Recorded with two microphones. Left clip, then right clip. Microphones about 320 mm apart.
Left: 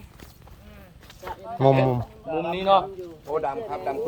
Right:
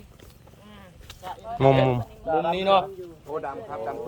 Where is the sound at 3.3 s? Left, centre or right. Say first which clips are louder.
Left 5 dB; left.